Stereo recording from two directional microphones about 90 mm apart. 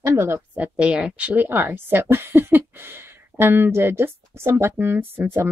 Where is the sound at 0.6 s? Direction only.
10° right (ahead or behind).